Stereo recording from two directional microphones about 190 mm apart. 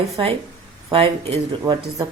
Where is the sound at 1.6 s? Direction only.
15° right (ahead or behind).